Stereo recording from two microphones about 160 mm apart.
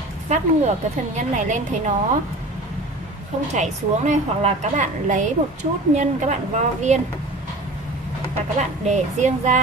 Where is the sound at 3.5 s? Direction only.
45° right (ahead or behind).